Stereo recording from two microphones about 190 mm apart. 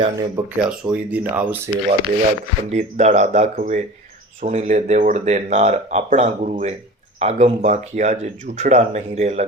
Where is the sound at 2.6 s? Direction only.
35° right (ahead or behind).